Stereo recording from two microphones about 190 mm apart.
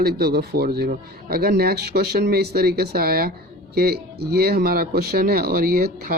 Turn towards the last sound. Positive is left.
turn(degrees=-50)  # may be behind; listen again after turning